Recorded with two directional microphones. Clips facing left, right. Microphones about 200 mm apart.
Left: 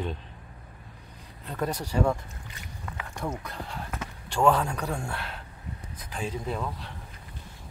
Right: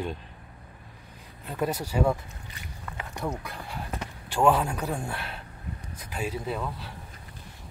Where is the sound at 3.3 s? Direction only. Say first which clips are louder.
Even; 10° right (ahead or behind).